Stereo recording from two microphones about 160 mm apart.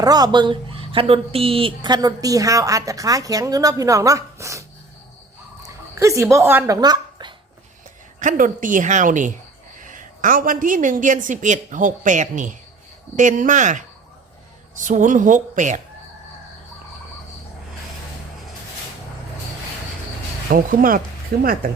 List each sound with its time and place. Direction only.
0.0 s speech: 25° right (ahead or behind)
5.6 s a sound: 20° right (ahead or behind)
6.3 s a woman's voice: 15° right (ahead or behind)
6.7 s a sound: 25° right (ahead or behind)
8.2 s a woman's voice: 55° right (ahead or behind)
20.5 s speech: 60° right (ahead or behind)